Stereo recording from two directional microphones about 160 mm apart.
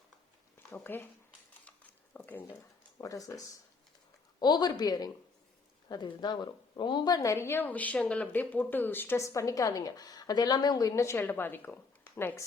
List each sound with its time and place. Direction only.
0.7 s speech: 10° left (ahead or behind)
1.6 s a sound: 10° left (ahead or behind)
3.0 s speech: 20° left (ahead or behind)